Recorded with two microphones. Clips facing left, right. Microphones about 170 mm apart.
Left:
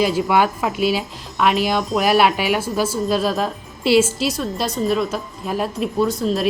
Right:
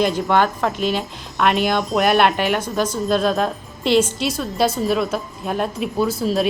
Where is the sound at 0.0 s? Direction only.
5° left (ahead or behind).